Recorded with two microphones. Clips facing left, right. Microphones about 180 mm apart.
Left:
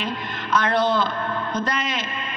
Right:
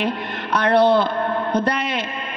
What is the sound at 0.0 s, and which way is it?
A man's voice, 65° right (ahead or behind).